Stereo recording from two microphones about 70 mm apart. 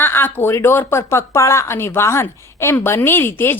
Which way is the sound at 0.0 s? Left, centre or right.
Left.